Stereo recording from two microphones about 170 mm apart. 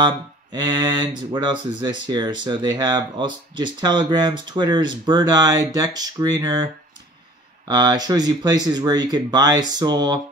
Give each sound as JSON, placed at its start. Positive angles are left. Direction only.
{"t": 0.0, "sound": "speech", "side_deg": -25}